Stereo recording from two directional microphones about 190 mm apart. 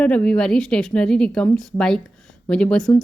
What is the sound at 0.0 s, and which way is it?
Speech, 5° left (ahead or behind).